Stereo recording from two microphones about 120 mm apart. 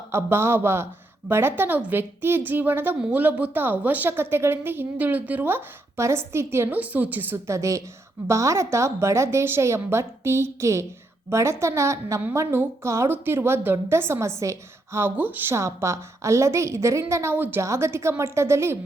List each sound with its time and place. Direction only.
0.1 s a woman's voice: 20° right (ahead or behind)